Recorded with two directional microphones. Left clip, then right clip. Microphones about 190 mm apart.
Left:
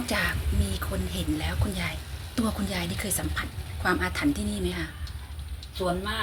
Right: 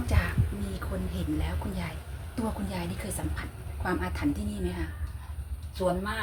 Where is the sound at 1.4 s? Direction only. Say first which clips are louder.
Left 4 dB; 20° left (ahead or behind).